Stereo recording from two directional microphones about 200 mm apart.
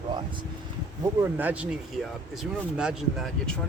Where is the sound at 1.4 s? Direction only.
5° right (ahead or behind).